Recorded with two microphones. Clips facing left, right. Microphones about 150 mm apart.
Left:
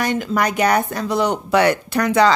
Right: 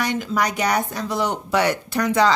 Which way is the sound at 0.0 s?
55° left (ahead or behind).